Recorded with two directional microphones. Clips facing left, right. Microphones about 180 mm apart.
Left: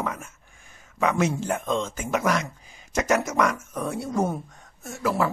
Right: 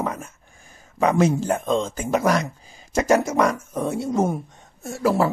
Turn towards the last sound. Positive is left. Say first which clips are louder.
# right 5 dB
turn(degrees=-35)  # may be behind; listen again after turning